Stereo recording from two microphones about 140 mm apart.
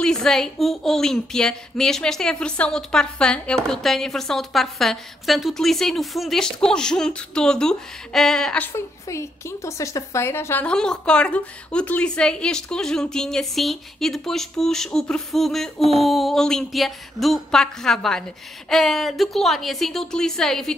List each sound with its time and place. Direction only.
0.0 s a woman's voice: 5° left (ahead or behind)
8.7 s a woman's voice: 20° left (ahead or behind); by 20.7 s 5° left (ahead or behind)